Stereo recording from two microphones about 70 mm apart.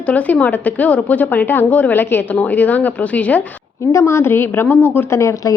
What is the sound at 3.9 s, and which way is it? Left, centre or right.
A woman's voice, left.